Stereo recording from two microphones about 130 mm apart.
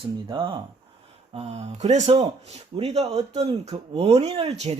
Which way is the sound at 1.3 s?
55° right (ahead or behind).